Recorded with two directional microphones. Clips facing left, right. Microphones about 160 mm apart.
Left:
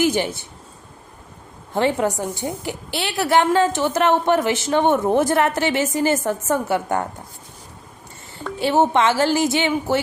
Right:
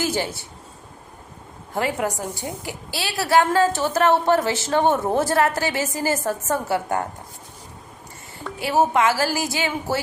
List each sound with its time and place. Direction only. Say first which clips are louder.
0.0 s speech: left 5 dB; 20° left (ahead or behind)
1.7 s a woman's voice: left 4 dB; 25° left (ahead or behind)
8.5 s a woman's voice: left 2 dB; 25° left (ahead or behind)